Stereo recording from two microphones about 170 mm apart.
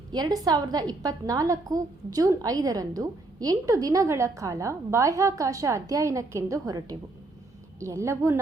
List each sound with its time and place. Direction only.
0.1 s a woman's voice: 25° right (ahead or behind)